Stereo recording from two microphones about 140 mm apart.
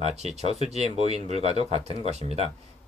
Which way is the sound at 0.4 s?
50° right (ahead or behind).